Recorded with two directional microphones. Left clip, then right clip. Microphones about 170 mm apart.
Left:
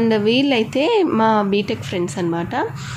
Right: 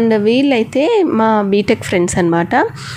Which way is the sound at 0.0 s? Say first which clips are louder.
Right 4 dB; 20° right (ahead or behind).